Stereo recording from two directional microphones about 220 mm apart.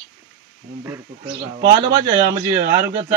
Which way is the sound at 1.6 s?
20° right (ahead or behind).